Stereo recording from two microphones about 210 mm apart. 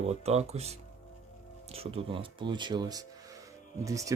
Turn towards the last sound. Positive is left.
turn(degrees=-15)  # may be behind; listen again after turning